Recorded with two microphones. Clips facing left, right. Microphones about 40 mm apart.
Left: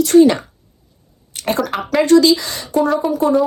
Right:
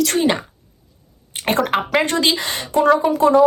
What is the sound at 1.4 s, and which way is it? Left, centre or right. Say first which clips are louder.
Speech: right 1 dB; right.